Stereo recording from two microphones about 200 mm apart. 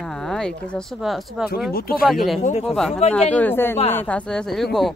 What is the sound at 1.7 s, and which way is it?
Speech, 45° left (ahead or behind).